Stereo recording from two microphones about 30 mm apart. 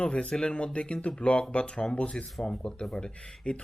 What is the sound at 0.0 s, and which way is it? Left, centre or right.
Speech, left.